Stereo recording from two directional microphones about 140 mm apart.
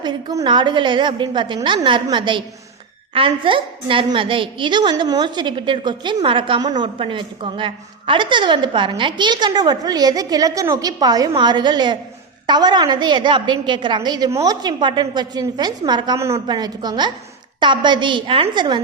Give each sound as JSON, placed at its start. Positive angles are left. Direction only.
{"t": 0.0, "sound": "a woman's voice", "side_deg": -30}